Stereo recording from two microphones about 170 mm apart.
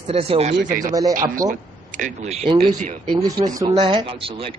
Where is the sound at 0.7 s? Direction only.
55° right (ahead or behind).